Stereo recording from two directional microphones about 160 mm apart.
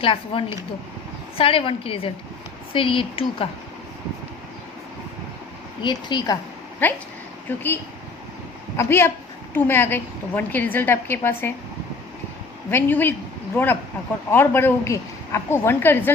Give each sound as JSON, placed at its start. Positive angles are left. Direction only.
{"t": 0.0, "sound": "a woman's voice", "side_deg": 35}
{"t": 5.8, "sound": "speech", "side_deg": 30}
{"t": 6.8, "sound": "a woman's voice", "side_deg": 10}
{"t": 8.7, "sound": "a woman's voice", "side_deg": 15}
{"t": 12.7, "sound": "a woman's voice", "side_deg": 10}
{"t": 14.3, "sound": "a woman's voice", "side_deg": 15}